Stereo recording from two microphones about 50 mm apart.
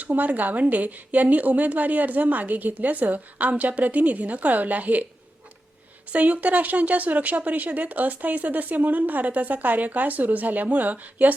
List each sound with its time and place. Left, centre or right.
0.0 s speech: right
6.1 s speech: right